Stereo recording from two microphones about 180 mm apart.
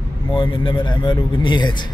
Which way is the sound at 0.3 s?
25° left (ahead or behind).